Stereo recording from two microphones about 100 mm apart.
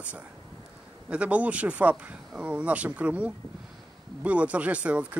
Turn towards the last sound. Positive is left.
turn(degrees=-10)  # may be behind; listen again after turning